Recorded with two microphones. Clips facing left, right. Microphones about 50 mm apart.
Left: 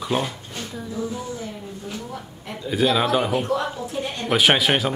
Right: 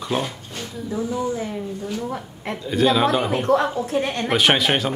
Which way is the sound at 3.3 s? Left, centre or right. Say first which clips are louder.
Right 4 dB; right.